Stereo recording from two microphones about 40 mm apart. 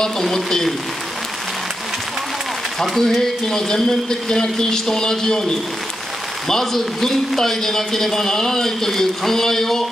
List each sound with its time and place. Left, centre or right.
0.0 s a man's voice: centre
2.8 s a man's voice: centre